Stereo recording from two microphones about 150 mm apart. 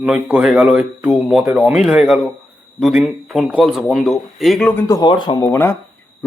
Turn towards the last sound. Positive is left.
turn(degrees=15)  # may be behind; listen again after turning